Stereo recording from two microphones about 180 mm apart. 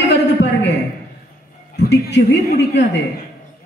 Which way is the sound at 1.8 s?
70° left (ahead or behind).